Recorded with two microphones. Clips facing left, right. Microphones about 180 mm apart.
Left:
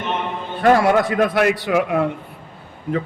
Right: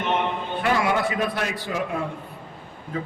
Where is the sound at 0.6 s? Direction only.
55° left (ahead or behind).